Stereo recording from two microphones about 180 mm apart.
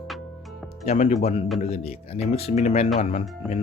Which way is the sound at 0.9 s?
40° left (ahead or behind).